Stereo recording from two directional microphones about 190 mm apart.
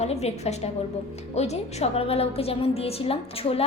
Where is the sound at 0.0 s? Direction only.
35° left (ahead or behind).